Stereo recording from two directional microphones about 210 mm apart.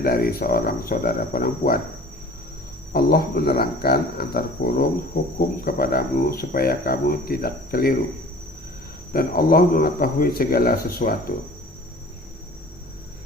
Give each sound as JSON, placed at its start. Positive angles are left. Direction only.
{"t": 0.0, "sound": "speech", "side_deg": 45}
{"t": 2.9, "sound": "speech", "side_deg": 45}
{"t": 9.1, "sound": "speech", "side_deg": 45}